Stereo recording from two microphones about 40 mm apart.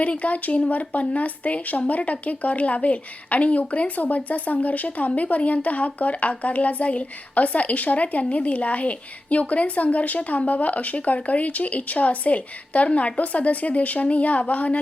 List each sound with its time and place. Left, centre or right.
0.0 s a woman's voice: left